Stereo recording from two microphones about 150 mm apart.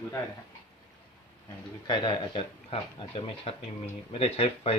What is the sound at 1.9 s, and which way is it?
Speech, 35° left (ahead or behind).